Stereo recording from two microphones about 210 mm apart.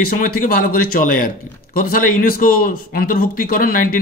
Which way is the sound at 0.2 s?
40° left (ahead or behind).